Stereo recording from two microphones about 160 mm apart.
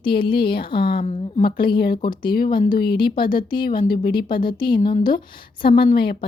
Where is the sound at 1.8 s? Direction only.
75° left (ahead or behind).